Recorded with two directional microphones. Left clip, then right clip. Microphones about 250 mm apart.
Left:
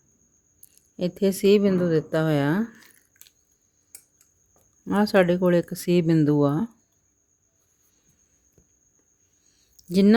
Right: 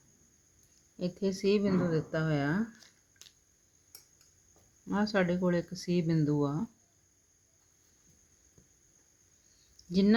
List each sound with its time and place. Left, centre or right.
0.9 s speech: left
4.9 s speech: left
9.9 s speech: left